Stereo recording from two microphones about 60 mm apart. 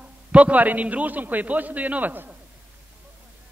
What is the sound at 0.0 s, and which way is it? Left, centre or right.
A man's voice, right.